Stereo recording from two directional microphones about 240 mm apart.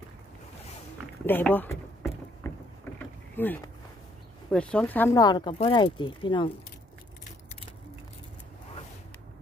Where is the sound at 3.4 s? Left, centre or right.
Centre.